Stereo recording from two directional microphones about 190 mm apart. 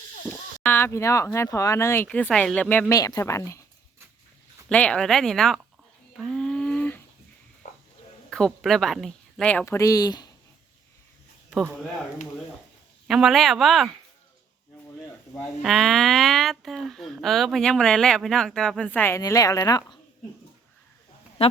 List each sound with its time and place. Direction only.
0.3 s speech: 10° left (ahead or behind)
4.7 s speech: 5° left (ahead or behind)
6.1 s a sound: centre (ahead or behind)
7.6 s cricket: 40° left (ahead or behind)
8.3 s speech: 5° left (ahead or behind); by 10.3 s 20° left (ahead or behind)
11.5 s speech: 5° left (ahead or behind)
13.1 s speech: centre (ahead or behind)
15.6 s speech: centre (ahead or behind); by 20.0 s 20° left (ahead or behind)